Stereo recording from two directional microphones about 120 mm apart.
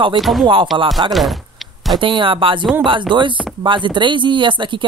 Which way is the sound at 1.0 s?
45° right (ahead or behind).